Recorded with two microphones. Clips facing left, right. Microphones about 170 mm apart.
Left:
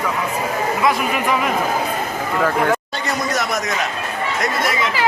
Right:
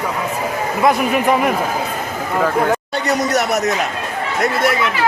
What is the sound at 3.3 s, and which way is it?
Speech, 65° right (ahead or behind).